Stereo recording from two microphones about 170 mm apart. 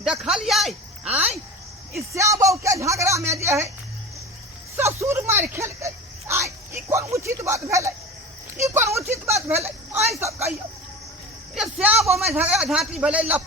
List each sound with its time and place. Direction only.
0.0 s a man's voice: 5° right (ahead or behind)
2.1 s speech: 20° right (ahead or behind)
4.8 s a sound: 15° right (ahead or behind)
10.2 s speech: 15° right (ahead or behind)
11.5 s a woman's voice: 5° right (ahead or behind)